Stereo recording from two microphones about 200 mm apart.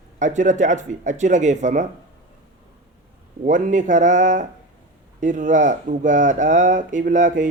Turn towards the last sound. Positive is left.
turn(degrees=-40)  # may be behind; listen again after turning